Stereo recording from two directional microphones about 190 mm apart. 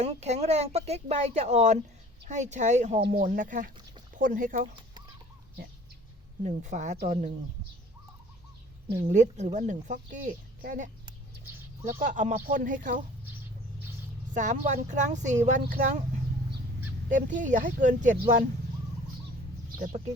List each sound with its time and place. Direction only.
0.0 s a woman's voice: 35° right (ahead or behind)
6.4 s a woman's voice: 40° right (ahead or behind)
9.0 s a woman's voice: 40° right (ahead or behind)
11.9 s a woman's voice: 40° right (ahead or behind)
14.3 s a woman's voice: 40° right (ahead or behind)
17.1 s speech: 45° right (ahead or behind)
19.8 s a woman's voice: 40° right (ahead or behind)